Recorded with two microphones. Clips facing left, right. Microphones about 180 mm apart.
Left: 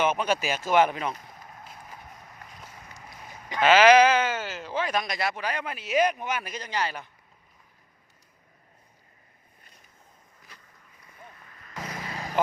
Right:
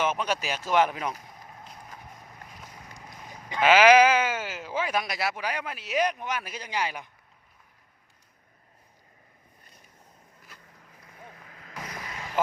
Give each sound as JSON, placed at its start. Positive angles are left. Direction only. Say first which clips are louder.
{"t": 0.0, "sound": "speech", "louder": "left 3 dB", "side_deg": 0}
{"t": 3.6, "sound": "speech", "louder": "left 1 dB", "side_deg": -10}
{"t": 12.1, "sound": "vehicle", "louder": "left 4 dB", "side_deg": 35}